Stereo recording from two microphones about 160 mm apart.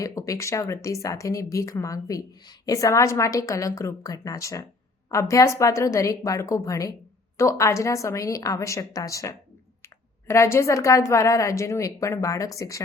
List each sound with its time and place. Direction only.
0.0 s speech: 20° left (ahead or behind)